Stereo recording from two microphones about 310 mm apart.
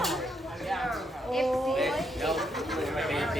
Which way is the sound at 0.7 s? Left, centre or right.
Centre.